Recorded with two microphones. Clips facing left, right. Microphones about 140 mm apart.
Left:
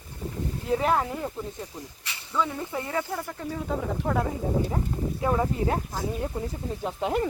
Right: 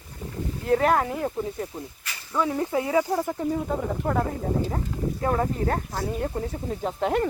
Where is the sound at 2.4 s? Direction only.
15° right (ahead or behind).